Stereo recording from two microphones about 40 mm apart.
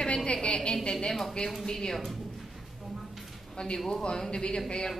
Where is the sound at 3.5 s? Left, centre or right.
Left.